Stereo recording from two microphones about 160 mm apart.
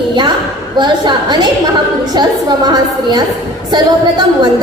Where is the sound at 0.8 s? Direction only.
30° right (ahead or behind).